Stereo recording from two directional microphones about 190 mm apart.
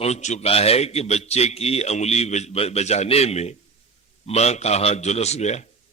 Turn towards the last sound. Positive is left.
turn(degrees=35)  # may be behind; listen again after turning